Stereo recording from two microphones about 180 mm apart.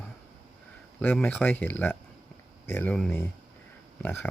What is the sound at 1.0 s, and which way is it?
Speech, 5° left (ahead or behind).